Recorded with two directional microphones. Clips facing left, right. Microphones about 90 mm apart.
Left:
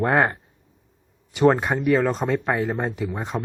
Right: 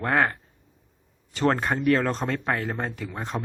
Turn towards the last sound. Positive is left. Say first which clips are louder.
# left 5 dB
turn(degrees=15)  # may be behind; listen again after turning